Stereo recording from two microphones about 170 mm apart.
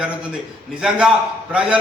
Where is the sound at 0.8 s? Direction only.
5° right (ahead or behind).